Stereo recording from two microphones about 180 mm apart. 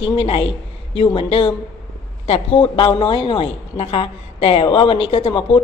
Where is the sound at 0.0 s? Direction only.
30° left (ahead or behind).